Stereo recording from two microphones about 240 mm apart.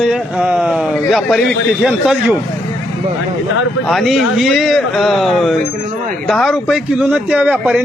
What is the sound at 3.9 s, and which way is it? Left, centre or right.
A man's voice, centre.